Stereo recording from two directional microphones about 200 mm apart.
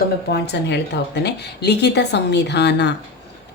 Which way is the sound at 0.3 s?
55° left (ahead or behind).